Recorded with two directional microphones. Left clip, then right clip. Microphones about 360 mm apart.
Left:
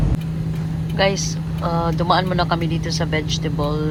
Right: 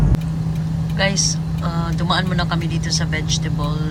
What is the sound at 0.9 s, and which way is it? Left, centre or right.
Speech, centre.